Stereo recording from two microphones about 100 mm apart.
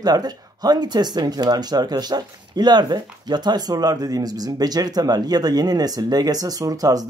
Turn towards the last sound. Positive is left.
turn(degrees=-40)  # may be behind; listen again after turning